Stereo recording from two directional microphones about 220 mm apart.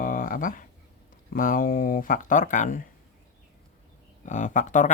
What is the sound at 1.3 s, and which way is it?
Speech, 40° left (ahead or behind).